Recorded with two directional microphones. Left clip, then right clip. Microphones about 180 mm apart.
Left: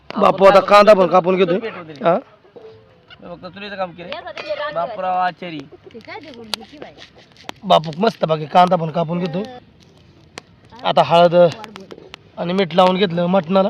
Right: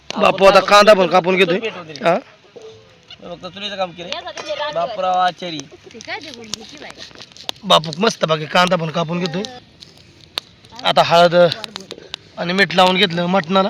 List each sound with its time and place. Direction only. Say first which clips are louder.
0.1 s a man's voice: even; 15° left (ahead or behind)
1.6 s speech: right 3 dB; 60° right (ahead or behind)
2.0 s speech: even; 5° left (ahead or behind)
3.2 s speech: right 4 dB; 60° right (ahead or behind)
6.1 s speech: right 6 dB; 25° right (ahead or behind)
7.4 s speech: even; 5° left (ahead or behind)
10.8 s speech: right 1 dB; centre (ahead or behind)
11.6 s a sound: right 4 dB; 20° right (ahead or behind)
12.4 s speech: right 1 dB; centre (ahead or behind)